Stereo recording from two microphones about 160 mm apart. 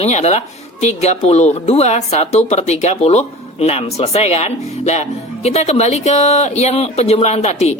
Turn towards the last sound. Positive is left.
turn(degrees=45)  # may be behind; listen again after turning